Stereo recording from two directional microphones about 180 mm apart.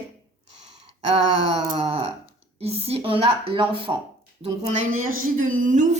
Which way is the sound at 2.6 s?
35° right (ahead or behind).